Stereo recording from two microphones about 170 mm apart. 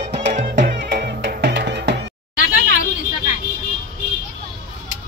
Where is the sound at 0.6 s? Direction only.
65° right (ahead or behind).